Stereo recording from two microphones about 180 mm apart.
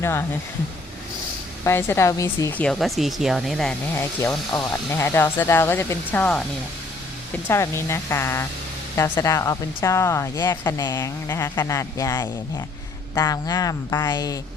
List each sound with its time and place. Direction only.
0.0 s speech: 15° left (ahead or behind)
1.6 s speech: 15° left (ahead or behind)
3.9 s speech: 15° left (ahead or behind)
7.4 s speech: 15° left (ahead or behind)